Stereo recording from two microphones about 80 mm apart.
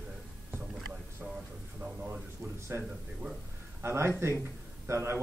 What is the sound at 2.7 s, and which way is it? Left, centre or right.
A man's voice, right.